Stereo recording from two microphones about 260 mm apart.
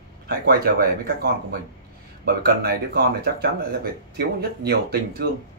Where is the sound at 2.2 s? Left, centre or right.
Right.